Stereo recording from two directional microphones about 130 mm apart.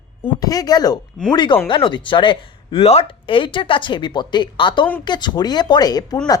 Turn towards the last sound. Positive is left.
turn(degrees=30)  # may be behind; listen again after turning